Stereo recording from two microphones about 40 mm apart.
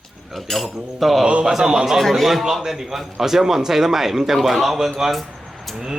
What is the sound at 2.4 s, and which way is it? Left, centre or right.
A man's voice, centre.